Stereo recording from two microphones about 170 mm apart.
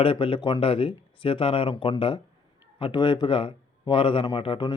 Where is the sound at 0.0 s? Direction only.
30° left (ahead or behind).